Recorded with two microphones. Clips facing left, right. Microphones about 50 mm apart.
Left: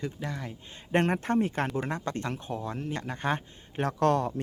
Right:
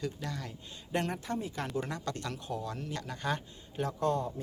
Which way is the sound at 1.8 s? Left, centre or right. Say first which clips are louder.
Left 4 dB; left.